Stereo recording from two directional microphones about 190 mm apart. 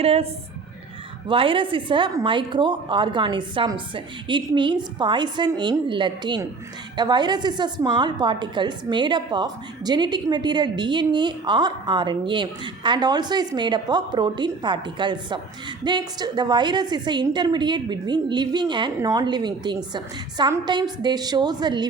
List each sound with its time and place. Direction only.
0.0 s a woman's voice: 30° right (ahead or behind)
1.3 s a woman's voice: 25° right (ahead or behind)